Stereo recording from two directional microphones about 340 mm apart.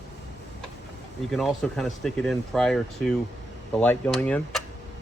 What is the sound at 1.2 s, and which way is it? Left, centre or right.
Speech, centre.